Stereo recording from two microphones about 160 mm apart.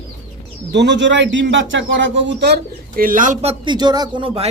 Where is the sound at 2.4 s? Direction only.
80° right; by 3.3 s 60° right (ahead or behind).